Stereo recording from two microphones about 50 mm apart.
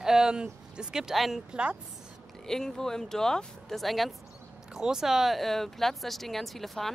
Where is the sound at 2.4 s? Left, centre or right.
Centre.